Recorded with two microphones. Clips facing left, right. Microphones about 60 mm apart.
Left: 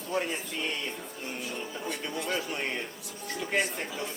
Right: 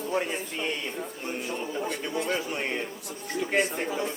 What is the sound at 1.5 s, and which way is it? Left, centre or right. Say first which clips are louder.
Speech: right 6 dB; right.